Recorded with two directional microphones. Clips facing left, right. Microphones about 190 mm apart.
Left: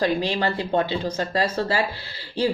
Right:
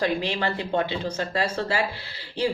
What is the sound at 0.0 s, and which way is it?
Speech, 35° left (ahead or behind).